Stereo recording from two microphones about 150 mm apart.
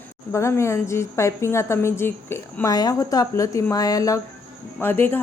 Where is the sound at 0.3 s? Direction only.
20° left (ahead or behind).